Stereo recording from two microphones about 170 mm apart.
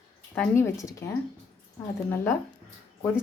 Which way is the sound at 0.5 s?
15° left (ahead or behind).